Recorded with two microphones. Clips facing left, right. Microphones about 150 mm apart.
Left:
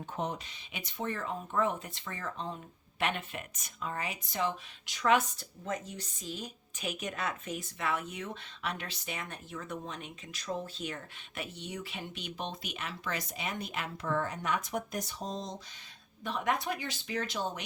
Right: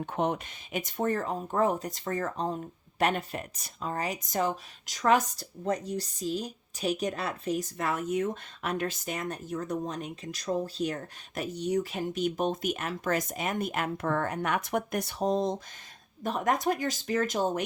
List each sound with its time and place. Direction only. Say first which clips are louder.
0.0 s speech: right 7 dB; 65° right (ahead or behind)
0.7 s speech: right 8 dB; 45° right (ahead or behind)
16.2 s speech: right 5 dB; 45° right (ahead or behind)